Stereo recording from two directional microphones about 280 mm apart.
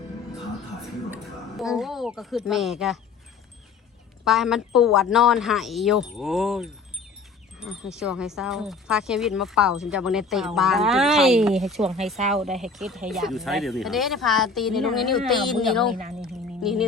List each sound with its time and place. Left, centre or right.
1.1 s speech: centre
4.3 s speech: centre
16.2 s a sound: centre